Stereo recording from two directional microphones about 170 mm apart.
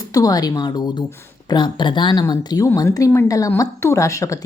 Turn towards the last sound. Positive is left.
turn(degrees=20)  # may be behind; listen again after turning